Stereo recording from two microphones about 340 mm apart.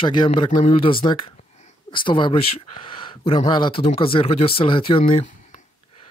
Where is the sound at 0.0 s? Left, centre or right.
Centre.